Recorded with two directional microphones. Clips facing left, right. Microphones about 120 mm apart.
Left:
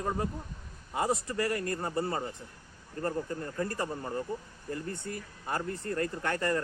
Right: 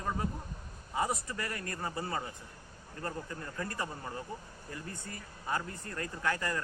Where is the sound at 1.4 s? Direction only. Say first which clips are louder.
Left 7 dB; 35° left (ahead or behind).